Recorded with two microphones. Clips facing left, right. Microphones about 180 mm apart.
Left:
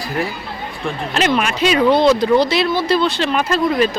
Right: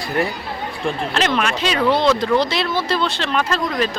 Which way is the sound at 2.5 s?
5° left (ahead or behind).